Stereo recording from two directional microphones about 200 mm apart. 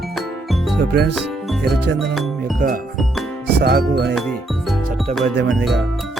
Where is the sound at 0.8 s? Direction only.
55° right (ahead or behind).